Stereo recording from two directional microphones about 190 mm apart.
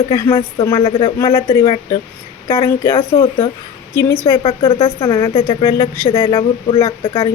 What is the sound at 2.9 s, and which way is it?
Speech, 30° left (ahead or behind).